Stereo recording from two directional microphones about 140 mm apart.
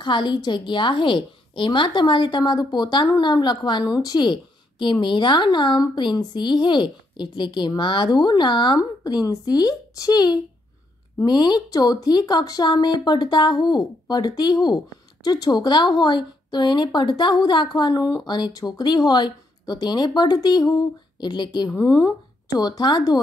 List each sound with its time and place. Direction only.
0.0 s speech: 35° left (ahead or behind)